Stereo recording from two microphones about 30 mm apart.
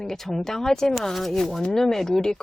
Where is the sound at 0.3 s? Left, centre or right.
Centre.